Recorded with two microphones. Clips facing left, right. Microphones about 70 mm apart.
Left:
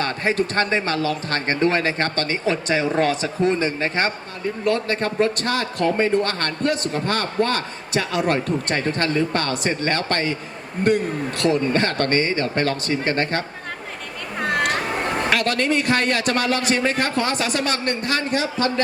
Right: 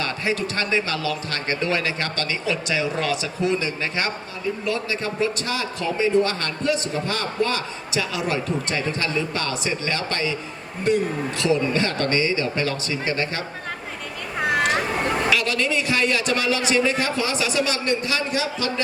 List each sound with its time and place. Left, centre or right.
0.0 s speech: left
4.6 s a man's voice: left
15.3 s a man's voice: left